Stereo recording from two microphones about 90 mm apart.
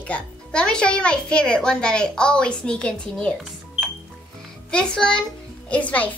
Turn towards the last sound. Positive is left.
turn(degrees=15)  # may be behind; listen again after turning